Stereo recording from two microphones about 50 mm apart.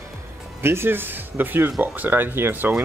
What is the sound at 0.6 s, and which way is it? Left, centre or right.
Speech, right.